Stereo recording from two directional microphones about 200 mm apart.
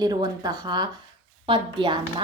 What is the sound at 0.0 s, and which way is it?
Speech, 20° right (ahead or behind).